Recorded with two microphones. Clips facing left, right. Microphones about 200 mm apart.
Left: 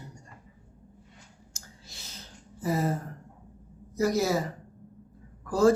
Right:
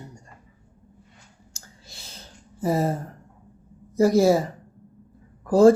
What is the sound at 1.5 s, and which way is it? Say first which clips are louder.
Clicking: right 2 dB; 30° right (ahead or behind).